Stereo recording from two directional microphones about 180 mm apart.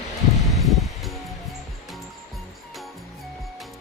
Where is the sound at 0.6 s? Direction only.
Centre (ahead or behind).